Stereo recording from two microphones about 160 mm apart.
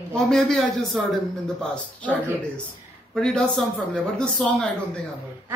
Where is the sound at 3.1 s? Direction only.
5° left (ahead or behind).